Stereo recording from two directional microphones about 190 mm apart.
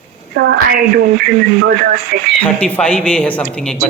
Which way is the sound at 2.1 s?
60° right (ahead or behind).